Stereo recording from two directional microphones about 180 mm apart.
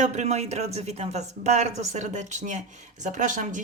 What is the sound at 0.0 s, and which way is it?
Speech, 40° right (ahead or behind).